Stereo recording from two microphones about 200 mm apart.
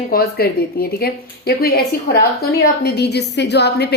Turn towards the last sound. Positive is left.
turn(degrees=55)  # may be behind; listen again after turning